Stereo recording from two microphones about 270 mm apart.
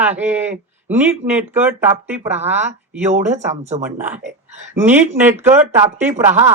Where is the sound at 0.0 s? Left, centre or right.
Centre.